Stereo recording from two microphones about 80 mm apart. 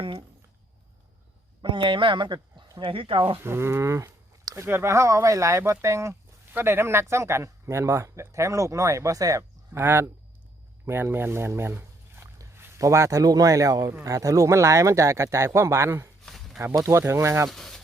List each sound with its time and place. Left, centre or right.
1.6 s speech: right
3.4 s speech: right
6.5 s speech: right
9.7 s speech: right
12.5 s a sound: right
12.8 s speech: right
16.2 s a sound: centre
16.8 s speech: right
17.5 s speech: centre